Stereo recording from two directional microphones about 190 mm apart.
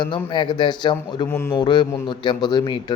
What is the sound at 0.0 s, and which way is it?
Speech, 25° left (ahead or behind).